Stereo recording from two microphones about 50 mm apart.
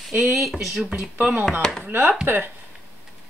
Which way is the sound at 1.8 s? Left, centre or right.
Right.